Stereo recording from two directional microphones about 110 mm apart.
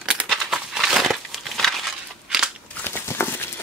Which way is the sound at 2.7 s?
20° left (ahead or behind).